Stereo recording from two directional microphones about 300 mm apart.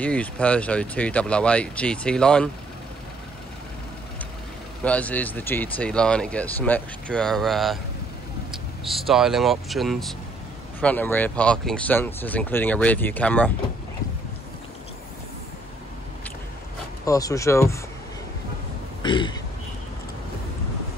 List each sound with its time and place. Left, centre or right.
0.0 s speech: centre
4.8 s speech: centre
17.0 s speech: centre
19.0 s a sound: centre